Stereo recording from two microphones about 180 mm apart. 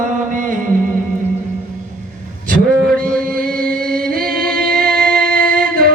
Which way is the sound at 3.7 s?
55° right (ahead or behind).